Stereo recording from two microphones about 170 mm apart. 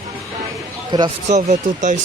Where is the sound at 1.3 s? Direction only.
45° right (ahead or behind).